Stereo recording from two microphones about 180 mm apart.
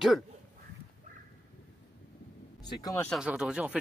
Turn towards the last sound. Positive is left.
turn(degrees=-5)  # may be behind; listen again after turning